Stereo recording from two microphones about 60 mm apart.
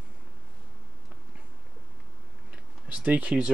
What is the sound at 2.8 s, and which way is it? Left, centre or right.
Speech, right.